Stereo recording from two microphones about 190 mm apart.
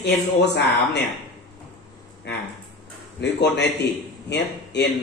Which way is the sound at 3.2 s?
65° left (ahead or behind).